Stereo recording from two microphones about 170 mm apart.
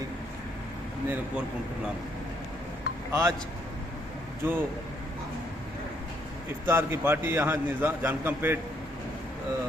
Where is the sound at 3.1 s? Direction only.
15° right (ahead or behind).